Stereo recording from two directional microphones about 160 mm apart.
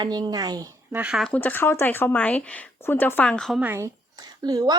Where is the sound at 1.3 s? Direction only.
10° left (ahead or behind).